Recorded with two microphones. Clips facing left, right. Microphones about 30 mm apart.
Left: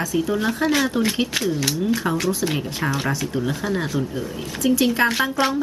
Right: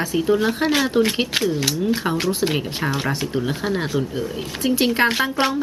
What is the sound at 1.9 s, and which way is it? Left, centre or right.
Speech, right.